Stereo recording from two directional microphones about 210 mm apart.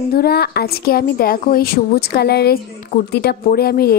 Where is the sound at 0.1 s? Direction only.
50° left (ahead or behind).